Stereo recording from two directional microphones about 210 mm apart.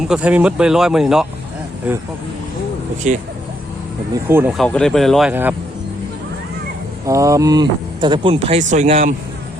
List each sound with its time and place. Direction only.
0.0 s speech: 5° right (ahead or behind)
3.1 s speech: 35° right (ahead or behind)
4.1 s speech: 10° right (ahead or behind)
4.5 s speech: 5° left (ahead or behind)
5.3 s speech: 10° right (ahead or behind)
7.1 s speech: 15° right (ahead or behind); by 9.1 s 30° right (ahead or behind)